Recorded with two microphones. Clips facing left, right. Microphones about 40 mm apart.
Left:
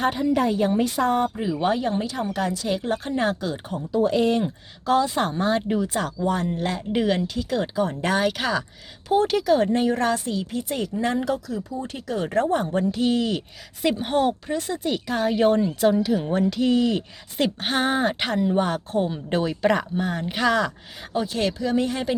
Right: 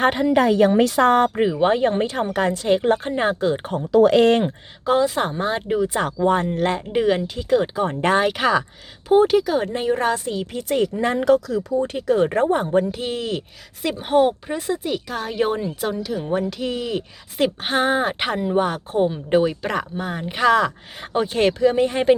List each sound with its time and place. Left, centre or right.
0.2 s a woman's voice: right
1.6 s speech: right
3.9 s speech: right
4.9 s a woman's voice: centre
5.9 s speech: right
6.9 s a woman's voice: centre
7.8 s a woman's voice: right
10.7 s speech: right
11.3 s speech: right
11.9 s speech: right
12.3 s speech: right
13.0 s a woman's voice: centre
14.8 s a woman's voice: centre
21.0 s speech: right